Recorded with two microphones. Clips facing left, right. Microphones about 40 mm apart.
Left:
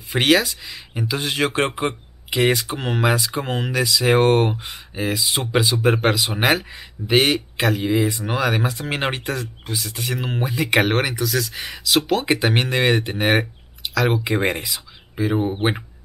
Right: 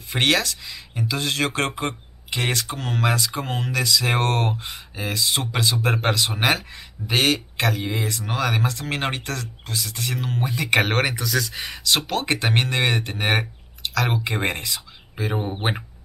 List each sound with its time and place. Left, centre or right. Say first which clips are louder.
0.1 s speech: left 3 dB; centre
3.4 s speech: left 3 dB; left
3.7 s speech: left 5 dB; centre